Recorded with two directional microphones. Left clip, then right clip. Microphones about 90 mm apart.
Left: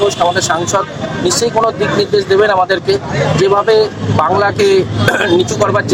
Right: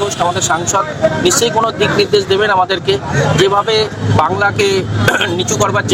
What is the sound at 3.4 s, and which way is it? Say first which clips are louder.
Speech: left 4 dB; 10° left (ahead or behind).